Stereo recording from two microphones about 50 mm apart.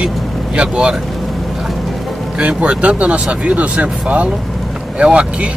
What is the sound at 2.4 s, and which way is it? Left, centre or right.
Speech, right.